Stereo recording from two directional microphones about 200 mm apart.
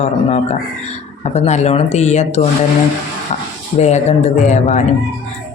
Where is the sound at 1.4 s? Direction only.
35° left (ahead or behind).